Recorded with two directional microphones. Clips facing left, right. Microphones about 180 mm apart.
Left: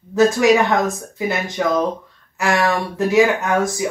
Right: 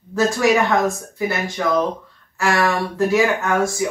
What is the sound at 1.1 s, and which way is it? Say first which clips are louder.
Speech: left 1 dB; 20° left (ahead or behind).